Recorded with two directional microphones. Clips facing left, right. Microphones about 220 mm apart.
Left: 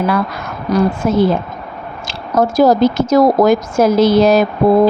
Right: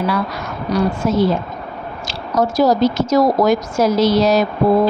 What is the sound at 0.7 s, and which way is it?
Speech, 55° left (ahead or behind).